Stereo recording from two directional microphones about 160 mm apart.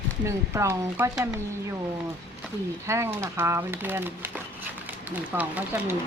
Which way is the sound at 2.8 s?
15° right (ahead or behind).